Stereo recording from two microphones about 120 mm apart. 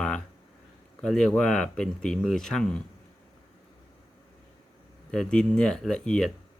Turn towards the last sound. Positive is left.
turn(degrees=5)  # may be behind; listen again after turning